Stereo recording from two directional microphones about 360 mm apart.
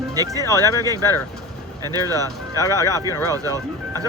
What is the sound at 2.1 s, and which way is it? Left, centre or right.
Speech, centre.